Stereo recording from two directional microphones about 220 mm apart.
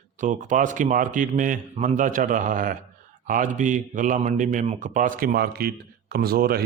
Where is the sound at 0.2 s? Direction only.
35° right (ahead or behind).